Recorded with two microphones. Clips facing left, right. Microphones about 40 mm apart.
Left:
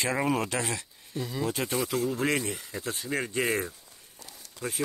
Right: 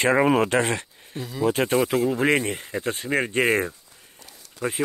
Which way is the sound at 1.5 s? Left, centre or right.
Right.